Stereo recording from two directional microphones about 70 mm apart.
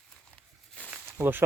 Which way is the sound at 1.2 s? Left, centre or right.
Right.